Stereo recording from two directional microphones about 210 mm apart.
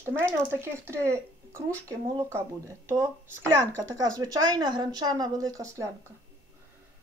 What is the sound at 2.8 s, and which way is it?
Speech, 10° right (ahead or behind).